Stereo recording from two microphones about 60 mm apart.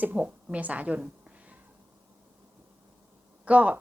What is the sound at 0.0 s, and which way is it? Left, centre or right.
A woman's voice, right.